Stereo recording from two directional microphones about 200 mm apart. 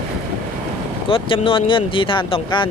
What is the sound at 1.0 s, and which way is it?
Speech, 25° left (ahead or behind).